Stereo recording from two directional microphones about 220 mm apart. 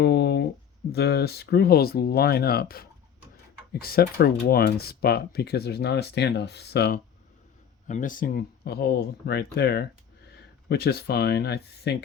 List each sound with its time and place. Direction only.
0.0 s a sound: 50° left (ahead or behind)
0.9 s speech: 45° left (ahead or behind)
7.9 s speech: 35° left (ahead or behind)